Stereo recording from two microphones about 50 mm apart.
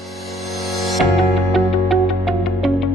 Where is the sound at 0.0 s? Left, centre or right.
Centre.